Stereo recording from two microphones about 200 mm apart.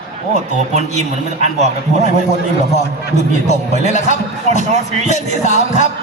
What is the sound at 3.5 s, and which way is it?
Music, 35° left (ahead or behind).